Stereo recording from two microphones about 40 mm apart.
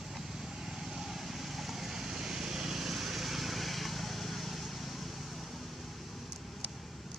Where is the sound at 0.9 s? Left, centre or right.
Centre.